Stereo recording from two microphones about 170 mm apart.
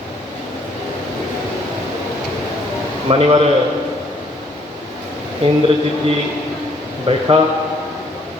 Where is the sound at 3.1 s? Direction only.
35° right (ahead or behind).